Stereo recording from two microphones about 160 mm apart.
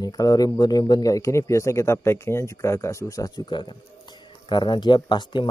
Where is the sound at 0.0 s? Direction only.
25° left (ahead or behind).